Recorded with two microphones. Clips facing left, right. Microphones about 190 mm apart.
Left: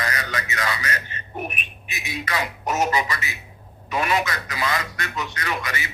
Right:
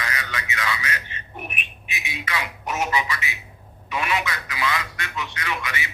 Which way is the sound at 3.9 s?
40° left (ahead or behind).